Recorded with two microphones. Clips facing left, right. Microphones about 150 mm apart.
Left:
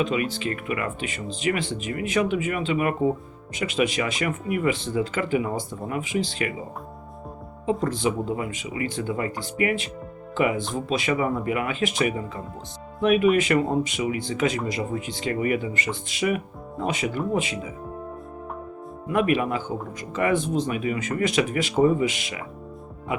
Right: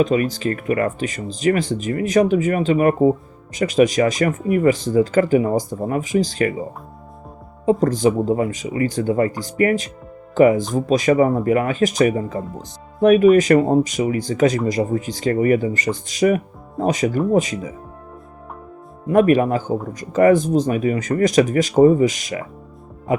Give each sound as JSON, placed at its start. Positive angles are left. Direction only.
{"t": 0.0, "sound": "speech", "side_deg": -40}
{"t": 7.6, "sound": "speech", "side_deg": -40}
{"t": 19.0, "sound": "speech", "side_deg": -40}